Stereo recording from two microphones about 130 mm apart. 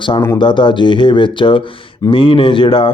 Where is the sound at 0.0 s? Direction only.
35° left (ahead or behind).